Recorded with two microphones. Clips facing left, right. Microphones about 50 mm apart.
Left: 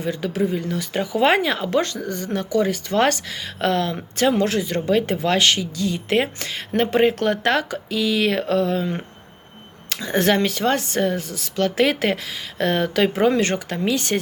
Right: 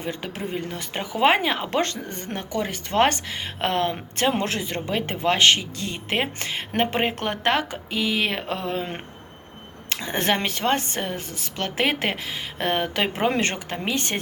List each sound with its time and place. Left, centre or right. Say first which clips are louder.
0.0 s speech: left 7 dB; right
6.1 s speech: left 2 dB; centre
9.9 s speech: left 5 dB; right